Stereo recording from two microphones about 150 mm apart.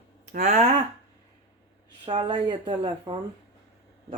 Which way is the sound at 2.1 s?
35° right (ahead or behind).